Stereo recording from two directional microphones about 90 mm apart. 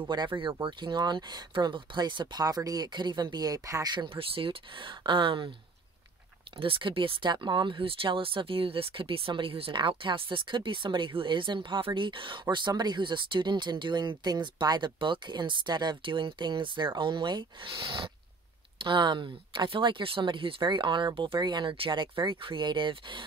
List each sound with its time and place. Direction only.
0.4 s speech: 65° right (ahead or behind)
2.4 s speech: 45° right (ahead or behind)
4.1 s speech: 90° right; by 5.5 s 65° right (ahead or behind)
6.6 s speech: 80° right; by 17.7 s 55° right (ahead or behind)
18.8 s speech: 65° right (ahead or behind)
21.4 s speech: 55° right (ahead or behind)